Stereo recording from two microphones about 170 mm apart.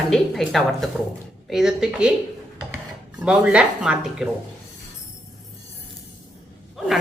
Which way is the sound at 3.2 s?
5° right (ahead or behind).